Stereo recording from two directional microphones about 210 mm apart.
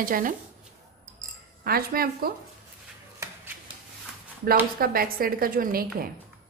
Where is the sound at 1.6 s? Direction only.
45° right (ahead or behind).